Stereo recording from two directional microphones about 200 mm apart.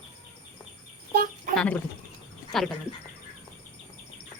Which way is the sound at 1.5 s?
5° left (ahead or behind).